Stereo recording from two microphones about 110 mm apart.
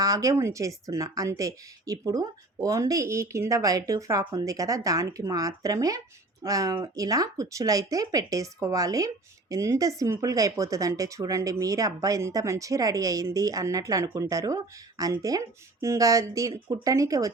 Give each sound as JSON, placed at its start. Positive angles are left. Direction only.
{"t": 0.0, "sound": "speech", "side_deg": -30}